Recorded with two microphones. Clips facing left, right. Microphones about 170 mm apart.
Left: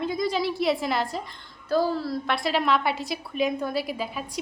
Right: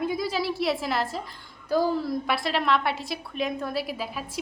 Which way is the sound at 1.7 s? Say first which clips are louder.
Even; 15° right (ahead or behind).